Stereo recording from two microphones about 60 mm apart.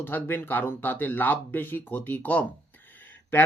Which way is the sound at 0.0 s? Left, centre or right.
Left.